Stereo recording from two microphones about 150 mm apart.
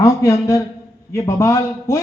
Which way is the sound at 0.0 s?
20° left (ahead or behind).